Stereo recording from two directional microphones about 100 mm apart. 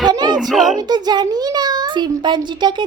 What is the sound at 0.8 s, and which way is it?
A child's voice, 45° right (ahead or behind).